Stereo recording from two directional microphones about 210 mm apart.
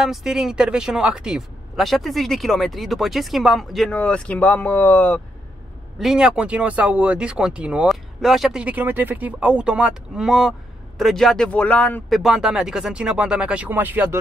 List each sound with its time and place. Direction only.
0.0 s speech: 5° right (ahead or behind)
5.9 s speech: 5° right (ahead or behind)